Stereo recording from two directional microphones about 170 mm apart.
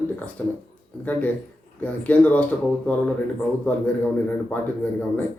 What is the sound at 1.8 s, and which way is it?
Speech, 10° left (ahead or behind).